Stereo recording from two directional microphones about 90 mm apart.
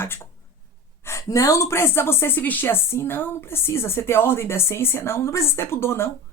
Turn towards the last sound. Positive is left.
turn(degrees=25)  # may be behind; listen again after turning